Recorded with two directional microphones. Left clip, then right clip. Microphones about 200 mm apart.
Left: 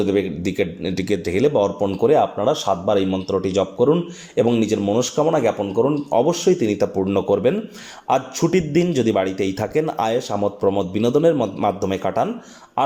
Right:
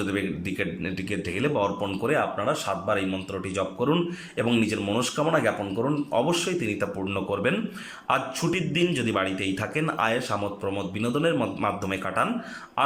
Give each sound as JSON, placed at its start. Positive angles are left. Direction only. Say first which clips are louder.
{"t": 0.0, "sound": "a man's voice", "louder": "left 9 dB", "side_deg": 20}